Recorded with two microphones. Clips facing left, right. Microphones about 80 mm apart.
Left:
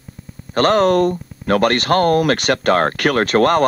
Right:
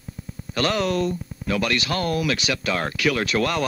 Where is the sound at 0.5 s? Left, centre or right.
Left.